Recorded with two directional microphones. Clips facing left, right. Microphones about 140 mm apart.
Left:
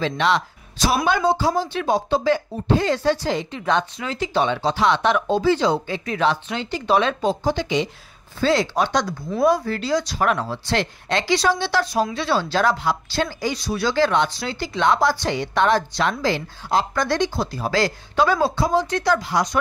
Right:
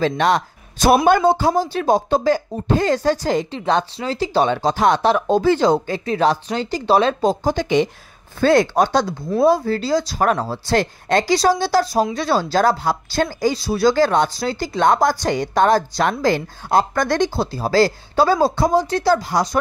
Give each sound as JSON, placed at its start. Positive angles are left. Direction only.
{"t": 0.0, "sound": "speech", "side_deg": -45}
{"t": 1.6, "sound": "speech", "side_deg": -40}
{"t": 3.5, "sound": "speech", "side_deg": -35}
{"t": 5.4, "sound": "speech", "side_deg": -50}
{"t": 9.4, "sound": "speech", "side_deg": -30}
{"t": 17.4, "sound": "speech", "side_deg": -30}